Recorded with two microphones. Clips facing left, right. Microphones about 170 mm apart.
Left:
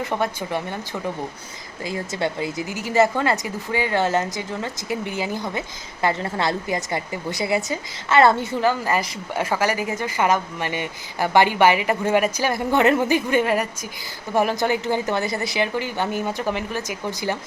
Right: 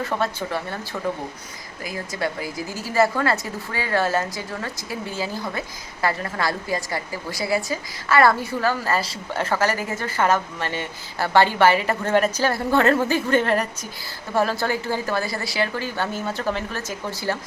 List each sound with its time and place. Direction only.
0.0 s a woman's voice: 15° left (ahead or behind)
1.8 s a woman's voice: 25° left (ahead or behind)